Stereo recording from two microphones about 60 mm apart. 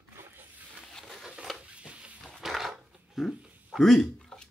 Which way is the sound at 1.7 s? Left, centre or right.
Centre.